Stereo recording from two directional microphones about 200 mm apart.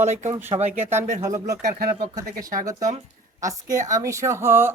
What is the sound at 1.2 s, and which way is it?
Speech, 15° right (ahead or behind).